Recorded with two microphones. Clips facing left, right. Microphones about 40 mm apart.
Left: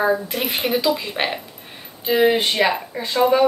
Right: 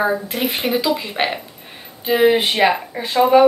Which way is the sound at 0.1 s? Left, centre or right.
Centre.